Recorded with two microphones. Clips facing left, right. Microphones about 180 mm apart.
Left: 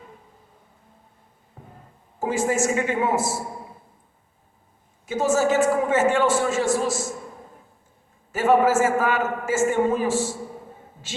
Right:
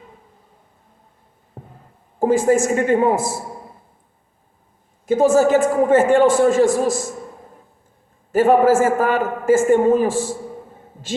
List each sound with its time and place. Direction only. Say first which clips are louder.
1.6 s heart sounds: right 6 dB; 45° right (ahead or behind)
2.1 s a man's voice: right 8 dB; 50° right (ahead or behind)
5.0 s a man's voice: right 7 dB; 55° right (ahead or behind)
8.3 s a man's voice: right 5 dB; 50° right (ahead or behind)